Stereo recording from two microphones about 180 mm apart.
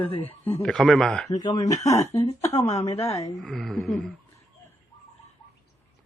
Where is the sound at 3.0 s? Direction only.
20° left (ahead or behind).